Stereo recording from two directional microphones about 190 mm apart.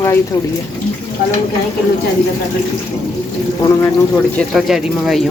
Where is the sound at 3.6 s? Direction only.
10° left (ahead or behind).